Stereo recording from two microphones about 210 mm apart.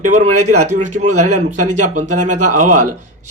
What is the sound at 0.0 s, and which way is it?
Speech, 35° right (ahead or behind).